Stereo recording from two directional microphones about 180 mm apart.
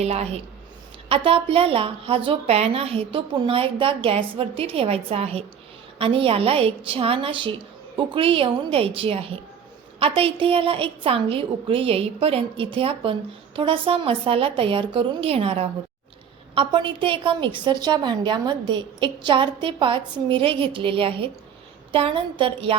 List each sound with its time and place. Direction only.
0.0 s a woman's voice: 35° right (ahead or behind)